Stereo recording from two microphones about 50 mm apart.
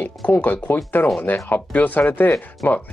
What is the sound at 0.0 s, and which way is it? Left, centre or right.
Speech, left.